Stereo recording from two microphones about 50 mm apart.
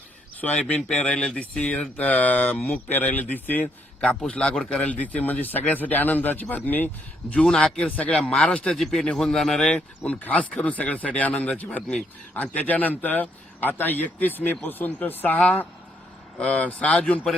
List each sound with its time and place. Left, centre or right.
0.4 s speech: centre; by 6.9 s left
7.4 s speech: centre
7.8 s speech: left
8.1 s speech: centre
8.7 s speech: centre
10.0 s speech: left
16.4 s speech: left